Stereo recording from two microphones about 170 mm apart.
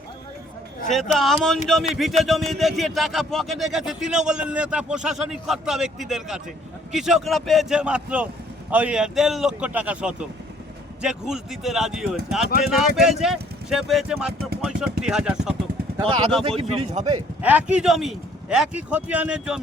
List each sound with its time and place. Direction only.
0.9 s a man's voice: centre (ahead or behind)
16.4 s speech: 35° right (ahead or behind)
17.4 s a man's voice: 10° right (ahead or behind)